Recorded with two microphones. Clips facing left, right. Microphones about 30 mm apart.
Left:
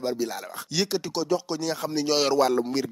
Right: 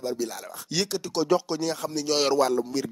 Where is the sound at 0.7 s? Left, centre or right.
Centre.